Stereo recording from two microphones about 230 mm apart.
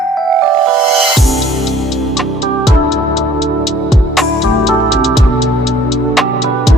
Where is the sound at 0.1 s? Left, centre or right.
Centre.